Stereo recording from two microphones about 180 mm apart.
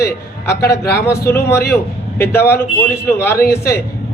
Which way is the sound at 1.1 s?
15° left (ahead or behind).